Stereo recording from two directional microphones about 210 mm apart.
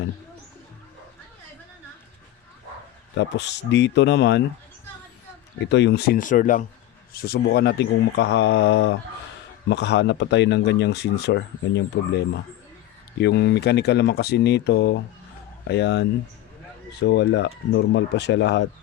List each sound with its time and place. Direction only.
3.2 s speech: 55° left (ahead or behind)
5.5 s speech: 55° left (ahead or behind)